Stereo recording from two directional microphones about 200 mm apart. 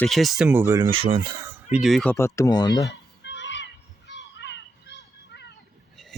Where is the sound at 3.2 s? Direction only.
65° left (ahead or behind).